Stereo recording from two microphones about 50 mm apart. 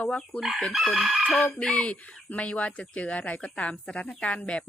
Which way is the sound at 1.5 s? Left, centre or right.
Left.